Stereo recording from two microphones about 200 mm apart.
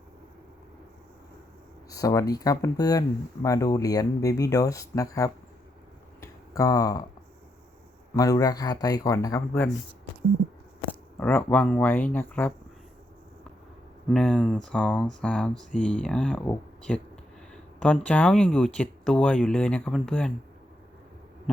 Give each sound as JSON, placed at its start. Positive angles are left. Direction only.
{"t": 1.9, "sound": "speech", "side_deg": 15}
{"t": 6.1, "sound": "a sound", "side_deg": 15}
{"t": 8.1, "sound": "speech", "side_deg": 15}
{"t": 11.2, "sound": "speech", "side_deg": 10}
{"t": 14.1, "sound": "speech", "side_deg": 0}